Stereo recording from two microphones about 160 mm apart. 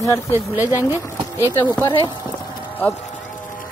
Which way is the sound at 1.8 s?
30° left (ahead or behind).